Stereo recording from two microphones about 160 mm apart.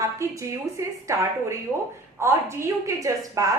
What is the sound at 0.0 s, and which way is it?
A woman's voice, 20° right (ahead or behind).